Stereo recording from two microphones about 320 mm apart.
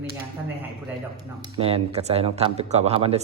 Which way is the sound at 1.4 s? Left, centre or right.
Centre.